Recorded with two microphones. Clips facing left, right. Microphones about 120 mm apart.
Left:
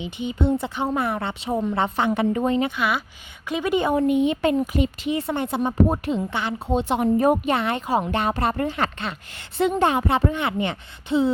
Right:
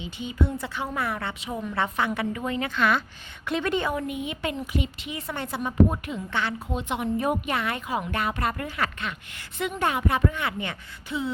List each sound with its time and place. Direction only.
0.0 s a woman's voice: 20° left (ahead or behind)
2.7 s a woman's voice: 10° left (ahead or behind)
3.8 s a woman's voice: 25° left (ahead or behind)
4.5 s a woman's voice: 45° left (ahead or behind); by 11.3 s 25° left (ahead or behind)